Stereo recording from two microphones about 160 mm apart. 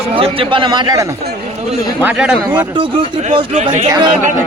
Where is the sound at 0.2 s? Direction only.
30° right (ahead or behind).